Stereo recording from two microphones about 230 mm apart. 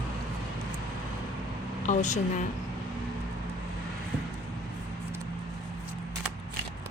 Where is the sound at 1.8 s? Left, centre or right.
Left.